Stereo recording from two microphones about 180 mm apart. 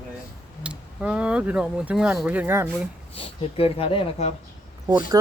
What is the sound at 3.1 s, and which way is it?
Speech, 30° left (ahead or behind).